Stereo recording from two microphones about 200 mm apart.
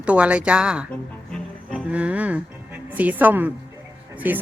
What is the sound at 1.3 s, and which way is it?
Music, 5° right (ahead or behind).